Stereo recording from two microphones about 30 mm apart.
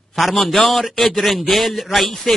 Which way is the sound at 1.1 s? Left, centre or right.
Centre.